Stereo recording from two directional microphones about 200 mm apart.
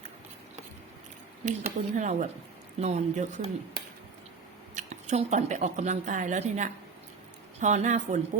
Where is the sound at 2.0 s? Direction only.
35° right (ahead or behind).